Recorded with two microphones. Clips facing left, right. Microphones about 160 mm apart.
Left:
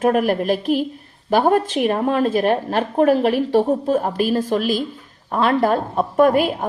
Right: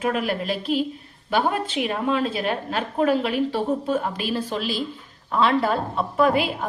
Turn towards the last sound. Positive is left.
turn(degrees=45)  # may be behind; listen again after turning